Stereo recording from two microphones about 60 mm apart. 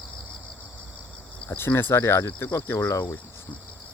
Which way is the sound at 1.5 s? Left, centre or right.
Left.